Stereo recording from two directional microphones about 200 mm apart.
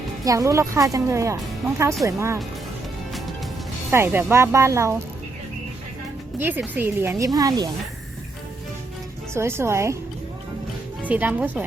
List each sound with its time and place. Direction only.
0.3 s speech: 15° right (ahead or behind)
3.9 s speech: 10° right (ahead or behind)
6.4 s speech: 10° right (ahead or behind)
9.3 s speech: 15° right (ahead or behind)
11.0 s speech: 10° right (ahead or behind)